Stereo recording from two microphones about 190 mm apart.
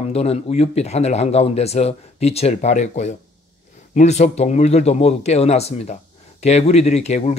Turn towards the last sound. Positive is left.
turn(degrees=35)  # may be behind; listen again after turning